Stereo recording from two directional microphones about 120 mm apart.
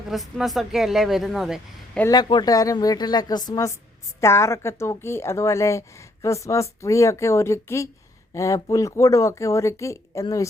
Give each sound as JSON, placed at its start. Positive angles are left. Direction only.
{"t": 0.1, "sound": "speech", "side_deg": 0}
{"t": 2.0, "sound": "a woman's voice", "side_deg": 35}